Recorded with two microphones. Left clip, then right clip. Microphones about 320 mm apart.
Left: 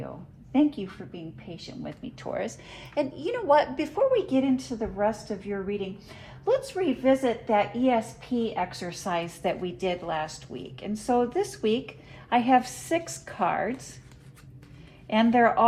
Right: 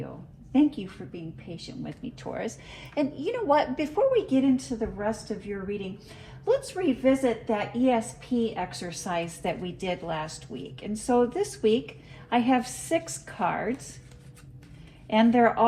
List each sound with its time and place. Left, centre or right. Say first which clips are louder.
0.5 s a woman's voice: even; left
15.0 s a woman's voice: even; left